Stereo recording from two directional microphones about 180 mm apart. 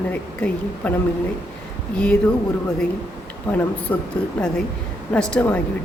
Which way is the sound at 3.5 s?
10° left (ahead or behind).